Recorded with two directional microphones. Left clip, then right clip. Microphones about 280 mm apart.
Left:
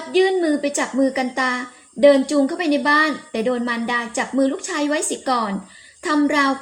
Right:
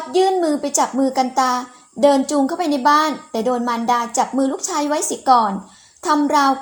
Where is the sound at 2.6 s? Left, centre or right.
Right.